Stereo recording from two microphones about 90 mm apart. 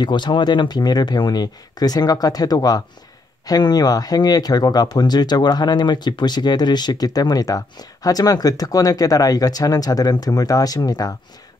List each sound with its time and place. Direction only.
0.0 s speech: 55° left (ahead or behind)